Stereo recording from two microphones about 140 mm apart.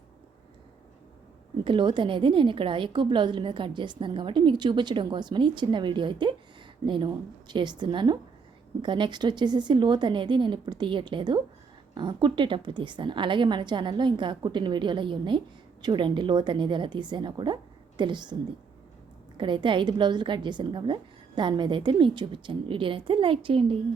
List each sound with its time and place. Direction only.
1.6 s a woman's voice: 35° right (ahead or behind)
19.4 s a woman's voice: 35° right (ahead or behind)